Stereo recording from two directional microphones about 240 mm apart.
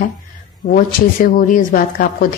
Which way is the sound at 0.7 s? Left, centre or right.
Left.